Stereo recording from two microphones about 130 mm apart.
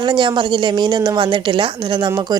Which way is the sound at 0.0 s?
35° right (ahead or behind).